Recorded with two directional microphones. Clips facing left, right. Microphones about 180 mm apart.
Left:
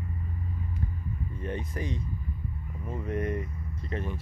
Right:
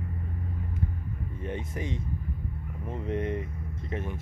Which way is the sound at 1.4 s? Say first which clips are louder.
Even; 20° right (ahead or behind).